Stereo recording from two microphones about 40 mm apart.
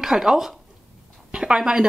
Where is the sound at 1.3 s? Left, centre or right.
Right.